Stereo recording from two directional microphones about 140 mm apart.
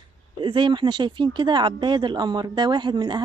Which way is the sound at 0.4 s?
35° right (ahead or behind).